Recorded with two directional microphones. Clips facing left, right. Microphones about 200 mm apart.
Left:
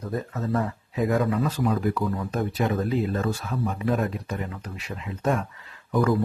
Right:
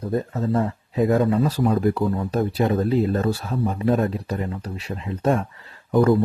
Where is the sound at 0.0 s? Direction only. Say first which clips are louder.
Right 5 dB; 30° right (ahead or behind).